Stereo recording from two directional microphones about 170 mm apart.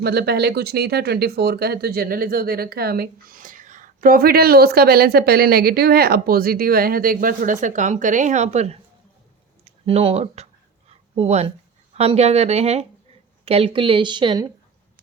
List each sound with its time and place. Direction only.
0.0 s speech: 70° right (ahead or behind); by 8.8 s 40° right (ahead or behind)
9.8 s speech: 35° right (ahead or behind)